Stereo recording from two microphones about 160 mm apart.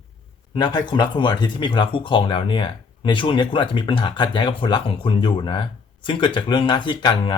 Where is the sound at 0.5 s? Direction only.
30° left (ahead or behind).